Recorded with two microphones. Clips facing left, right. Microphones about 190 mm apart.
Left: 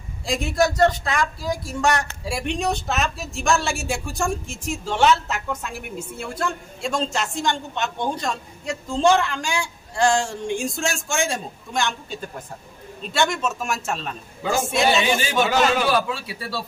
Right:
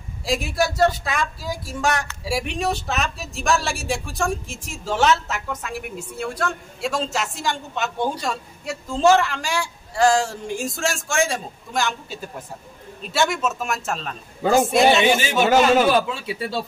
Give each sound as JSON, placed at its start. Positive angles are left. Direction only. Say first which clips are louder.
{"t": 0.2, "sound": "speech", "louder": "left 1 dB", "side_deg": -5}
{"t": 16.3, "sound": "speech", "louder": "right 4 dB", "side_deg": -20}